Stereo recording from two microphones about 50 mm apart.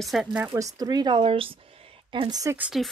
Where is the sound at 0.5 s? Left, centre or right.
Right.